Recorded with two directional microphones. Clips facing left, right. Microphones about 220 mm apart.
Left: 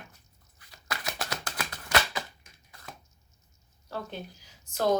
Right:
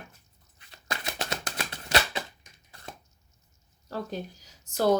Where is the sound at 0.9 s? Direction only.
25° right (ahead or behind).